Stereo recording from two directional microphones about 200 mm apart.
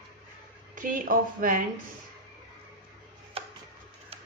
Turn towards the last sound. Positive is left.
turn(degrees=-30)  # may be behind; listen again after turning